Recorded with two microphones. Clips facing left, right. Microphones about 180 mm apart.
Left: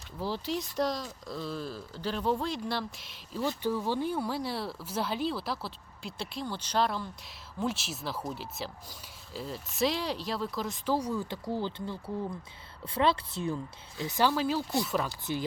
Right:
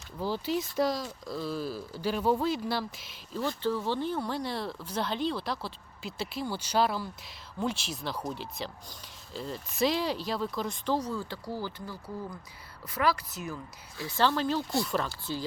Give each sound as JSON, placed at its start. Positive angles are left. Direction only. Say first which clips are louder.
{"t": 0.2, "sound": "speech", "louder": "right 2 dB", "side_deg": 0}
{"t": 3.4, "sound": "speech", "louder": "even", "side_deg": 15}
{"t": 15.1, "sound": "speech", "louder": "left 2 dB", "side_deg": 20}